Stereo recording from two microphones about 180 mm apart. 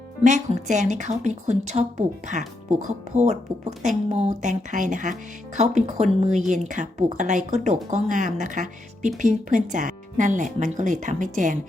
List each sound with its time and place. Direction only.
0.3 s a woman's voice: 40° right (ahead or behind)
6.1 s speech: centre (ahead or behind)
6.5 s speech: 45° right (ahead or behind)